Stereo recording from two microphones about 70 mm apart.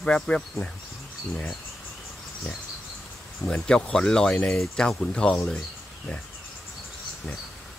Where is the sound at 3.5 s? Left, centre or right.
Centre.